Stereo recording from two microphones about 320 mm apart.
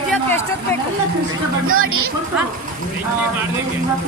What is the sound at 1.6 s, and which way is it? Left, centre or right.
Speech, right.